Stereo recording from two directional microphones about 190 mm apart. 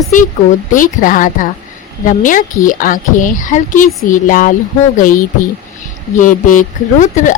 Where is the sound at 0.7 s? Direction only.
45° left (ahead or behind).